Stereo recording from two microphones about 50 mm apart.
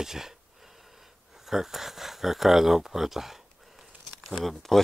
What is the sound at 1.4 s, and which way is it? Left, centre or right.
Speech, centre.